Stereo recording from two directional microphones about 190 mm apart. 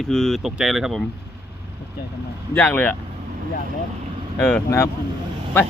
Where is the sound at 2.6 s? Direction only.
10° left (ahead or behind).